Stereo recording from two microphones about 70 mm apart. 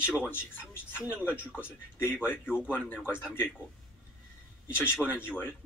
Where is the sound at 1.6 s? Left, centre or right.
Left.